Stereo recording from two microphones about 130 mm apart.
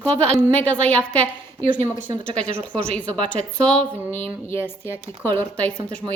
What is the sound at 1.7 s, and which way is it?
Speech, 80° left.